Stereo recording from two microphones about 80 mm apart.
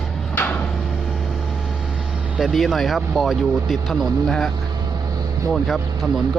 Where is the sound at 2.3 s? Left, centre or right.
Centre.